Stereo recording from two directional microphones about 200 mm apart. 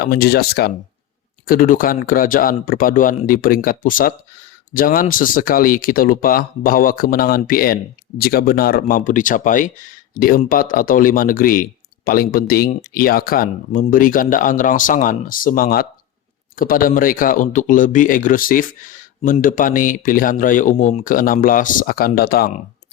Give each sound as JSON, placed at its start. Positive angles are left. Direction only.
{"t": 0.0, "sound": "speech", "side_deg": 50}